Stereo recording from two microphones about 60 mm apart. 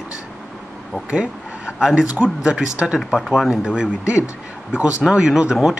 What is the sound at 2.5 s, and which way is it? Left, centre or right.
Speech, centre.